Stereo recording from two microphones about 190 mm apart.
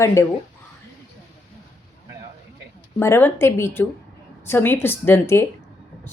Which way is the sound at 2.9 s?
10° left (ahead or behind).